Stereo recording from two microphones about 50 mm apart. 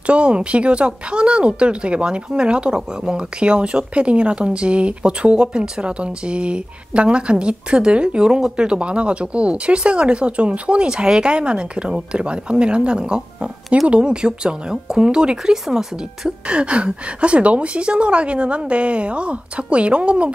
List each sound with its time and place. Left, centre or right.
0.0 s speech: right